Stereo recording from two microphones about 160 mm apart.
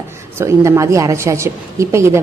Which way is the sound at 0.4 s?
20° right (ahead or behind).